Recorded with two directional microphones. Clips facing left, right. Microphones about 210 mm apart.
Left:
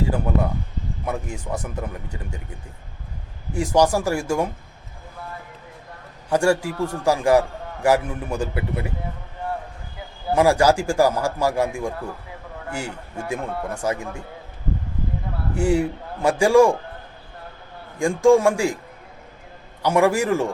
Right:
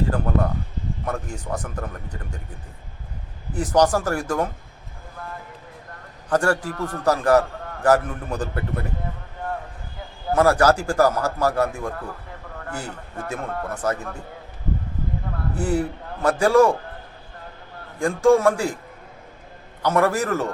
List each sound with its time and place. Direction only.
1.0 s a man's voice: 10° left (ahead or behind)
3.5 s a man's voice: 10° left (ahead or behind)
6.2 s a man's voice: 10° left (ahead or behind)
10.3 s a man's voice: 10° left (ahead or behind)
15.5 s a man's voice: 10° left (ahead or behind)
18.0 s a man's voice: 15° left (ahead or behind)
19.8 s a man's voice: 10° left (ahead or behind)